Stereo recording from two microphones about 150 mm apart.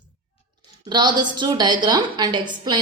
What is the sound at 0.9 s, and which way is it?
A woman's voice, 30° right (ahead or behind).